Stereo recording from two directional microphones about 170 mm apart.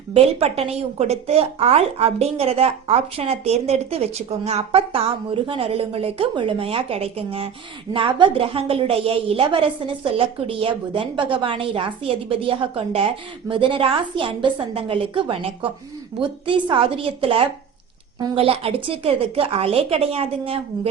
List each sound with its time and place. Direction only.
0.1 s a woman's voice: 35° right (ahead or behind)